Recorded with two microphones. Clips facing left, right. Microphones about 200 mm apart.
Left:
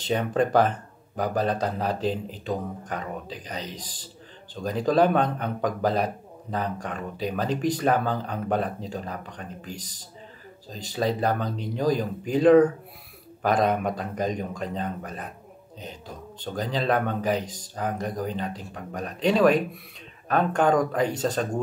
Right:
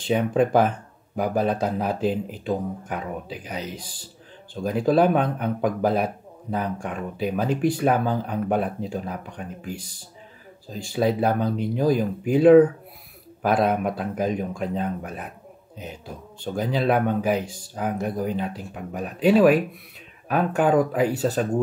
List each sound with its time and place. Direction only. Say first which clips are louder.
0.0 s speech: right 3 dB; 5° right (ahead or behind)
16.5 s speech: right 3 dB; 10° right (ahead or behind)